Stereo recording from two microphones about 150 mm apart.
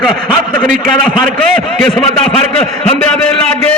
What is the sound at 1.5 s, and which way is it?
A man's voice, 5° left (ahead or behind).